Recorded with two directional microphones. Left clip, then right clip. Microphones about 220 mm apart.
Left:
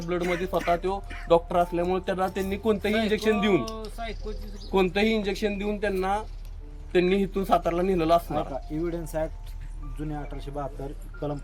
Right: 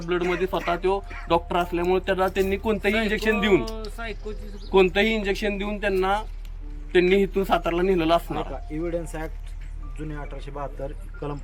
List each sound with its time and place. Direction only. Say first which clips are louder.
0.1 s speech: right 3 dB; 5° left (ahead or behind)
8.8 s speech: right 1 dB; 50° left (ahead or behind)
10.5 s speech: left 1 dB; 35° left (ahead or behind)